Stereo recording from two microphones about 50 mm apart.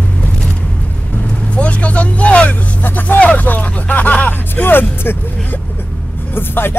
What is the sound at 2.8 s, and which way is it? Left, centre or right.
Vehicle, left.